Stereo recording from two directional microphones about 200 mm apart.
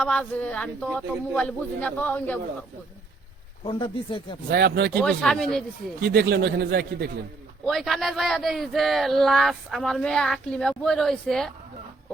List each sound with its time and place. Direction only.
0.0 s a man's voice: 5° left (ahead or behind)
3.6 s speech: 25° left (ahead or behind)
4.5 s speech: 50° right (ahead or behind)
5.0 s speech: centre (ahead or behind)
6.0 s speech: 55° right (ahead or behind)
7.6 s speech: centre (ahead or behind)